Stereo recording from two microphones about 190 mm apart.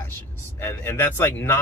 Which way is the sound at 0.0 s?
10° left (ahead or behind).